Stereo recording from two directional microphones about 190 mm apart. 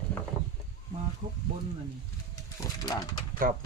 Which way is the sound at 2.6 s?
20° left (ahead or behind).